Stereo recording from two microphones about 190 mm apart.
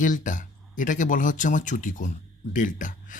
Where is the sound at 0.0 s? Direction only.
40° left (ahead or behind).